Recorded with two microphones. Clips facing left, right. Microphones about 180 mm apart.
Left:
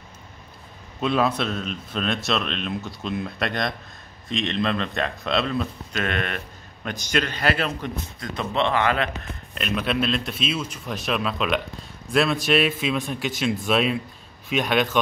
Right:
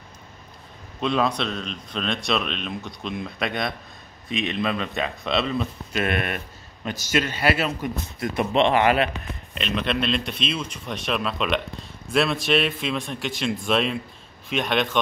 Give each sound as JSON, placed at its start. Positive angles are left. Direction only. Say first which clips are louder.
{"t": 1.0, "sound": "speech", "louder": "left 1 dB", "side_deg": 5}
{"t": 8.2, "sound": "speech", "louder": "right 4 dB", "side_deg": -20}
{"t": 9.5, "sound": "speech", "louder": "even", "side_deg": 5}